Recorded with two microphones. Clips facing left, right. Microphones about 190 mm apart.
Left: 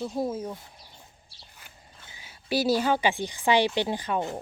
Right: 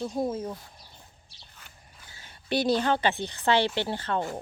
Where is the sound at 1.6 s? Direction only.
10° left (ahead or behind).